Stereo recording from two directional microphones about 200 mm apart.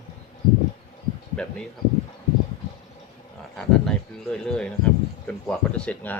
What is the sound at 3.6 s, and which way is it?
Speech, 5° left (ahead or behind).